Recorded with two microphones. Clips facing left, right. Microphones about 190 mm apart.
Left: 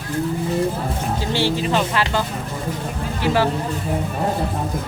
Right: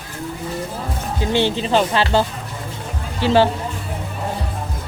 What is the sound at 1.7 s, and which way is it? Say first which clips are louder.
Speech: right 3 dB; 30° right (ahead or behind).